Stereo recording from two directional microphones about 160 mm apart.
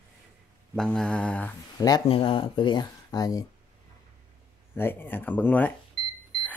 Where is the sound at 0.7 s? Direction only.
5° left (ahead or behind).